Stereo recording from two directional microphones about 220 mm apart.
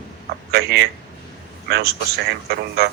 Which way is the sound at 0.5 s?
45° right (ahead or behind).